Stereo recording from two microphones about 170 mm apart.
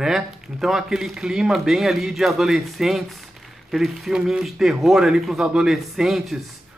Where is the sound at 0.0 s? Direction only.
Centre (ahead or behind).